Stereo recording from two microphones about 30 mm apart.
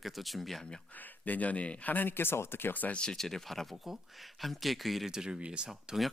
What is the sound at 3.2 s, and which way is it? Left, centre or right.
Speech, centre.